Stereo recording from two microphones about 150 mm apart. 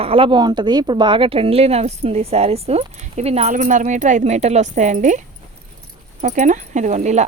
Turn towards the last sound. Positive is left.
turn(degrees=-50)  # may be behind; listen again after turning